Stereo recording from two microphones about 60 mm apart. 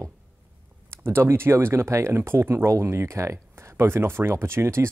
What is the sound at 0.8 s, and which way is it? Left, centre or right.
Speech, right.